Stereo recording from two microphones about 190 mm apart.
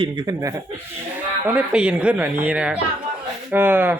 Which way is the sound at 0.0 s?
20° right (ahead or behind).